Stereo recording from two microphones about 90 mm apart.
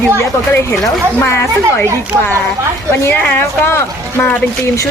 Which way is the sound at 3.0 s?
25° left (ahead or behind).